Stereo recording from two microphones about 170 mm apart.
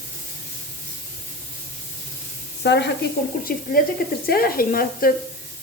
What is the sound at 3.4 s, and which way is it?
Speech, 55° left (ahead or behind).